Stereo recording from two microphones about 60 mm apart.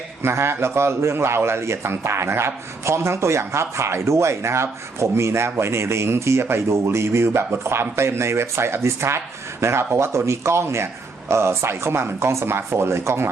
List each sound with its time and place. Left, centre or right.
0.2 s speech: right